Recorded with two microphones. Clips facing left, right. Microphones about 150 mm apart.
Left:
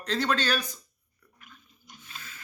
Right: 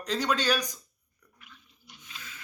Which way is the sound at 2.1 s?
45° left (ahead or behind).